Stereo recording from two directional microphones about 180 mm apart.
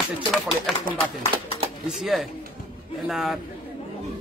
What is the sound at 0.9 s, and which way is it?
Speech, 30° left (ahead or behind).